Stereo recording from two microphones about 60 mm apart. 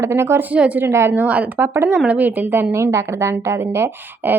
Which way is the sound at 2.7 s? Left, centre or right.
Right.